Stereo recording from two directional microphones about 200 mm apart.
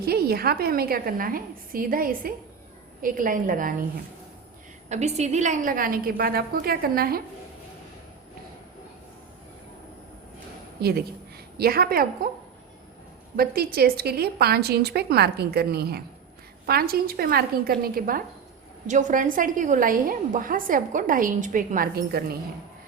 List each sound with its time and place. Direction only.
0.0 s a woman's voice: 50° right (ahead or behind)
4.9 s a woman's voice: 35° right (ahead or behind)
10.8 s a woman's voice: 50° right (ahead or behind)
13.3 s a woman's voice: 50° right (ahead or behind)